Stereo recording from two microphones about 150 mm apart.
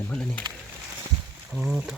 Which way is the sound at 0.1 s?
5° left (ahead or behind).